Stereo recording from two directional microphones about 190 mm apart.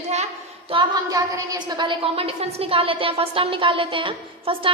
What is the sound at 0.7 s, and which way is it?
A woman's voice, 20° right (ahead or behind).